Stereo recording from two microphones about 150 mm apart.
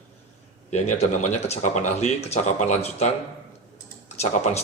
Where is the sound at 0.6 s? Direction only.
50° left (ahead or behind).